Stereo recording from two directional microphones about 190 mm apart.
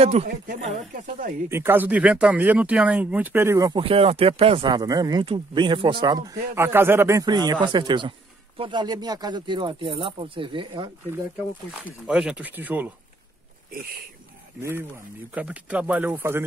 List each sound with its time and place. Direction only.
0.0 s speech: 35° right (ahead or behind)
1.5 s speech: 10° right (ahead or behind)
3.8 s speech: 30° right (ahead or behind)
11.3 s speech: 5° right (ahead or behind)
13.7 s speech: 50° right (ahead or behind)
14.6 s speech: 15° right (ahead or behind)